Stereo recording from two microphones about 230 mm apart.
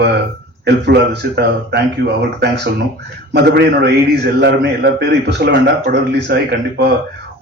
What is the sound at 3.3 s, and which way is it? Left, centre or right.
A man's voice, right.